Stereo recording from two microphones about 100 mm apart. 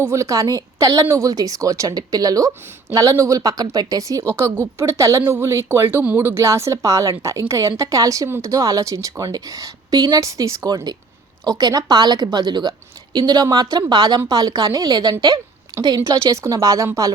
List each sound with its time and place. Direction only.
0.0 s a woman's voice: 30° right (ahead or behind)
4.4 s a woman's voice: 25° right (ahead or behind)